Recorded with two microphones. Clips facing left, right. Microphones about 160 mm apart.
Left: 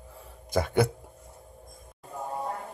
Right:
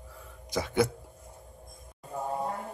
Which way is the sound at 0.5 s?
55° left (ahead or behind).